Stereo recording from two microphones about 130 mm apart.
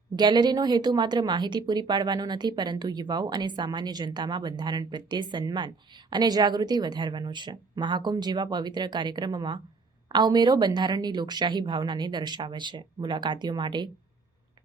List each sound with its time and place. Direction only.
0.2 s a woman's voice: 35° right (ahead or behind)